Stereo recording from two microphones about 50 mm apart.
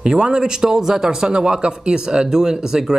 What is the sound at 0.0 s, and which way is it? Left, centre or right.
A man's voice, centre.